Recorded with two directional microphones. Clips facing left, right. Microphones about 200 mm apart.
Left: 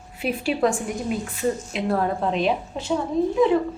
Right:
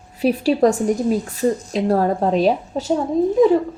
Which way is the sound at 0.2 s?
40° right (ahead or behind).